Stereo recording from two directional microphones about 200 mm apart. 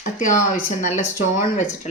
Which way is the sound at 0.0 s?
40° left (ahead or behind).